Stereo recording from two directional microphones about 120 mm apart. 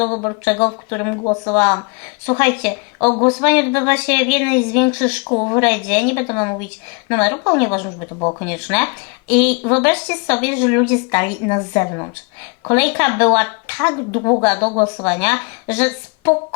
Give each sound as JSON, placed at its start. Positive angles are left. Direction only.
{"t": 0.0, "sound": "a woman's voice", "side_deg": 35}
{"t": 3.0, "sound": "speech", "side_deg": 30}
{"t": 3.4, "sound": "speech", "side_deg": 15}
{"t": 3.7, "sound": "a woman's voice", "side_deg": 30}
{"t": 4.1, "sound": "a woman's voice", "side_deg": 15}
{"t": 5.6, "sound": "a woman's voice", "side_deg": 15}
{"t": 8.4, "sound": "speech", "side_deg": 15}
{"t": 9.3, "sound": "speech", "side_deg": 5}
{"t": 9.9, "sound": "a woman's voice", "side_deg": 25}